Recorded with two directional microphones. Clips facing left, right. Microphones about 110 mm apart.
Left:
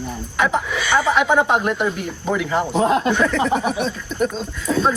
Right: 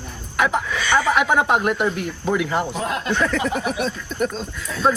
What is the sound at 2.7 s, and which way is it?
Speech, 25° left (ahead or behind).